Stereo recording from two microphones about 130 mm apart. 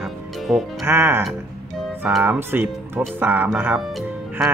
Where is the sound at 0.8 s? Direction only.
20° right (ahead or behind).